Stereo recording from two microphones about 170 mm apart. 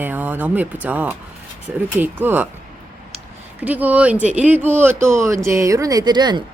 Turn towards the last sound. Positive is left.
turn(degrees=-25)  # may be behind; listen again after turning